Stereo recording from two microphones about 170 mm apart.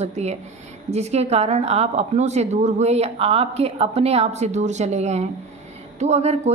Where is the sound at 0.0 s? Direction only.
40° right (ahead or behind).